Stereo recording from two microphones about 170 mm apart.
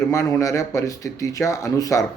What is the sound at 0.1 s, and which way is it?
Speech, 20° left (ahead or behind).